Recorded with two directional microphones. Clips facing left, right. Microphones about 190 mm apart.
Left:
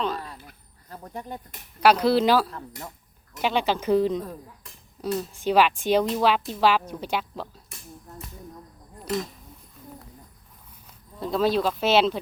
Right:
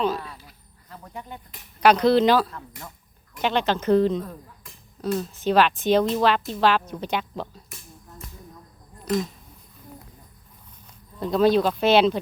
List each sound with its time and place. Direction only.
0.3 s a sound: 55° left (ahead or behind)
1.0 s speech: 40° left (ahead or behind)
1.8 s a woman's voice: 5° left (ahead or behind)
2.5 s speech: 30° left (ahead or behind)
3.3 s a woman's voice: 10° left (ahead or behind)
11.2 s speech: centre (ahead or behind)